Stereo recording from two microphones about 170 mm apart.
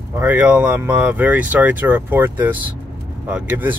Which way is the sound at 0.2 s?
10° right (ahead or behind).